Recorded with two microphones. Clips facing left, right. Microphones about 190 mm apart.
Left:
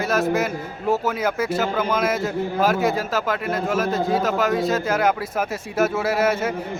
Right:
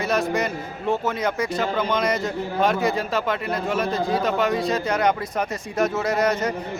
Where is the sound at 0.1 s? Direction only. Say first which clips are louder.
Left 2 dB; 5° left (ahead or behind).